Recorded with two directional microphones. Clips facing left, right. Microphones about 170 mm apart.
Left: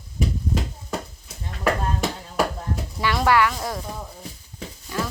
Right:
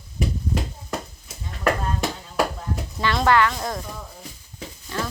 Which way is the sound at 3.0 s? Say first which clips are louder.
Even; 10° left (ahead or behind).